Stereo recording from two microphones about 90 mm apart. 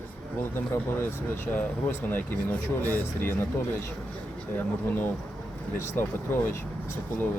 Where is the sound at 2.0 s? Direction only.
20° left (ahead or behind).